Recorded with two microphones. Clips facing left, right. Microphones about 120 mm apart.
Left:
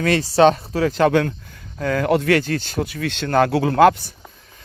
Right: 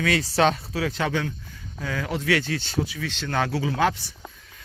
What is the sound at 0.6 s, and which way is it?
Speech, 45° left (ahead or behind).